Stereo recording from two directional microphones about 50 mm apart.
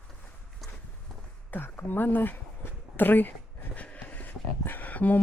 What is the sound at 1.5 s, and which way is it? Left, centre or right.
Speech, left.